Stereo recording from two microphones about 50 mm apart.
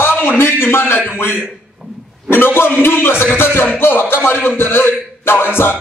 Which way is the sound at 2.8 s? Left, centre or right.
Left.